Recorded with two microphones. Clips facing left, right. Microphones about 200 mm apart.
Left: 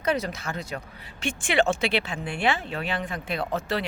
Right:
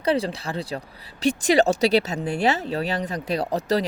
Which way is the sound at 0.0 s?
30° right (ahead or behind).